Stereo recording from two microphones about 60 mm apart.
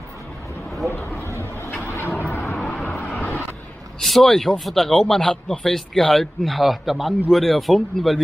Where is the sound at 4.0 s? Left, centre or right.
Centre.